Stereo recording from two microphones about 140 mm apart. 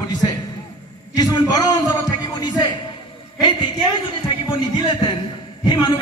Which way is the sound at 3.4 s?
30° left (ahead or behind).